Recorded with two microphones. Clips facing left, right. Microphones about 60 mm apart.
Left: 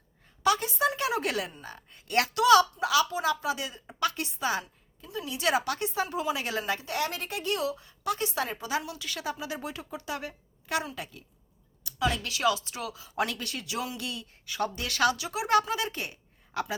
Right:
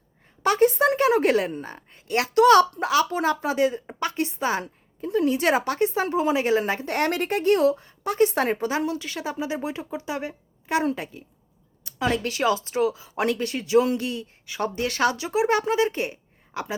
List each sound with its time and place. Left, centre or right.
0.4 s a woman's voice: right
2.3 s a woman's voice: right
6.8 s speech: right
8.7 s a woman's voice: right